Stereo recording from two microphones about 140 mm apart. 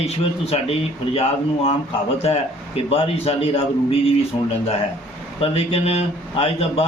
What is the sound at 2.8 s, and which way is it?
A man's voice, 45° left (ahead or behind).